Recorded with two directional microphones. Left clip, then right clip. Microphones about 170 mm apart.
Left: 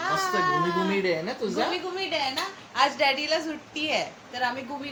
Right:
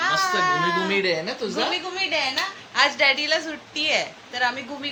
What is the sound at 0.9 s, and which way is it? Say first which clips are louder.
Speech: right 4 dB; 20° left (ahead or behind).